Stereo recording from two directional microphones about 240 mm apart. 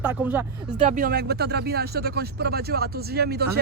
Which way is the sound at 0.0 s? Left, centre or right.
Centre.